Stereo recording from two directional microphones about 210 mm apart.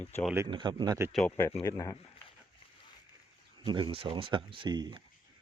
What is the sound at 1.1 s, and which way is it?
Speech, 10° left (ahead or behind).